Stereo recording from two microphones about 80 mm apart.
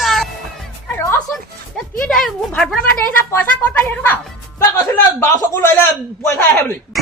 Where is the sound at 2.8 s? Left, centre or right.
Left.